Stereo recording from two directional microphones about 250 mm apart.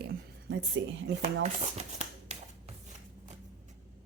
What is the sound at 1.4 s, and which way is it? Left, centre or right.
Speech, right.